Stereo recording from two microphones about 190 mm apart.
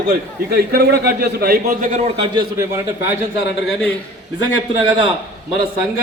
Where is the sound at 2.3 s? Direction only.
15° right (ahead or behind).